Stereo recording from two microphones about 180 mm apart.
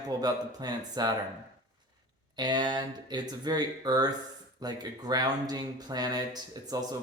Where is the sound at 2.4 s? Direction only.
25° right (ahead or behind).